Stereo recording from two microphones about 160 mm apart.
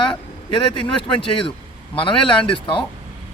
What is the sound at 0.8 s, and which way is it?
Speech, 35° left (ahead or behind).